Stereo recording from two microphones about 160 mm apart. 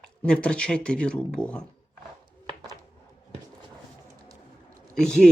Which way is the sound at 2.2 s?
30° right (ahead or behind).